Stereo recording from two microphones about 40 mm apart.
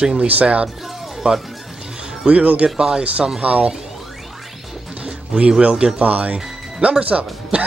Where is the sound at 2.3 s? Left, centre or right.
Right.